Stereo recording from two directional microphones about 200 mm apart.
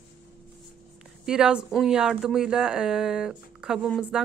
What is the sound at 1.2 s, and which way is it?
Speech, 5° right (ahead or behind).